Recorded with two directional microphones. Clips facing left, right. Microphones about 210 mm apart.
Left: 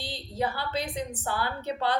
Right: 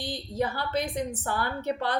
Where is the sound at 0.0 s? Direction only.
50° right (ahead or behind).